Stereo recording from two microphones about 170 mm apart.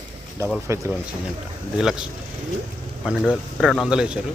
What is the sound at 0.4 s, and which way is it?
Speech, 15° right (ahead or behind).